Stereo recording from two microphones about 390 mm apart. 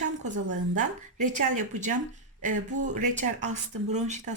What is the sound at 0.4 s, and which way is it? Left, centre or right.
Speech, right.